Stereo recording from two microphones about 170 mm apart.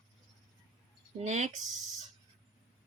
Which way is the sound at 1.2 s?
45° right (ahead or behind).